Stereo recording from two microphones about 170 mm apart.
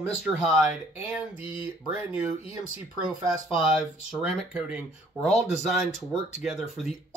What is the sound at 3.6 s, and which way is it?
Speech, 5° right (ahead or behind).